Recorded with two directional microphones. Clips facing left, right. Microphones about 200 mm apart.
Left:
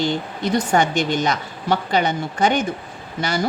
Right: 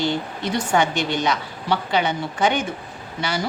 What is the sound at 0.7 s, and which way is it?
A woman's voice, 45° left (ahead or behind).